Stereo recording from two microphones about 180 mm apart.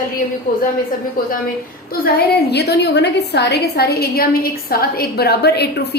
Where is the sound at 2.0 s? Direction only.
65° left (ahead or behind).